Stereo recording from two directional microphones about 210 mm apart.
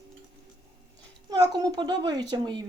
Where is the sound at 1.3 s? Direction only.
20° right (ahead or behind).